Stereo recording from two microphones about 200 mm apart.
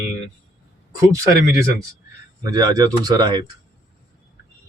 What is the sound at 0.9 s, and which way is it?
Speech, 15° right (ahead or behind).